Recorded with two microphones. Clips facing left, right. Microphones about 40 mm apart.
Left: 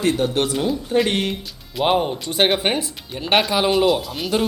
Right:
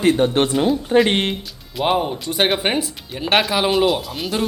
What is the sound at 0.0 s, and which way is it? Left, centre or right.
Speech, right.